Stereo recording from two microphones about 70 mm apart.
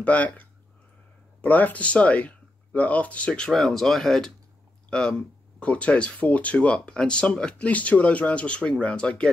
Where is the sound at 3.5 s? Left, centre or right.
Centre.